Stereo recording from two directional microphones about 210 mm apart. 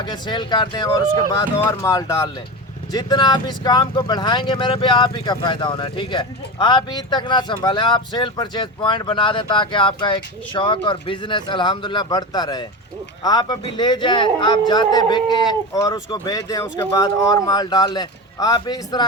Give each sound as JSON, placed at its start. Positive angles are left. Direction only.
{"t": 0.0, "sound": "speech", "side_deg": 20}